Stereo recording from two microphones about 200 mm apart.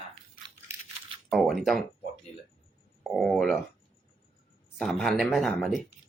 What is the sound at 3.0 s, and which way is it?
Speech, centre (ahead or behind).